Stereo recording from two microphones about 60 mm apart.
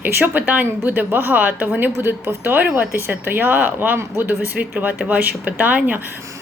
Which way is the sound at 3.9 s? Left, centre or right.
Right.